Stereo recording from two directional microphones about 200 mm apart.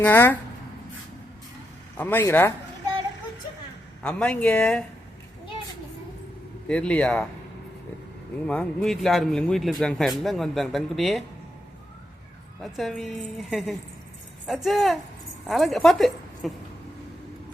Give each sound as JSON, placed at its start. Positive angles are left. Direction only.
{"t": 0.0, "sound": "a man's voice", "side_deg": 10}
{"t": 2.0, "sound": "a man's voice", "side_deg": 10}
{"t": 4.0, "sound": "a man's voice", "side_deg": 5}
{"t": 6.7, "sound": "a man's voice", "side_deg": 5}
{"t": 8.4, "sound": "a man's voice", "side_deg": 5}
{"t": 12.7, "sound": "a man's voice", "side_deg": 0}